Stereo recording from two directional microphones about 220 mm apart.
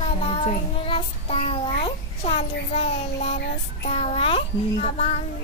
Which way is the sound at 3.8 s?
30° left (ahead or behind).